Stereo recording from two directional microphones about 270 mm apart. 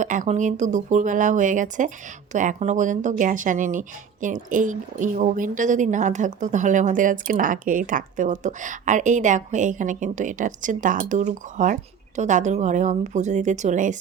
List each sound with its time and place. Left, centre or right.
0.0 s speech: right